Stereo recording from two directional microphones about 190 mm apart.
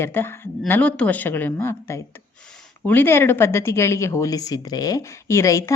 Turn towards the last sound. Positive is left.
turn(degrees=15)  # may be behind; listen again after turning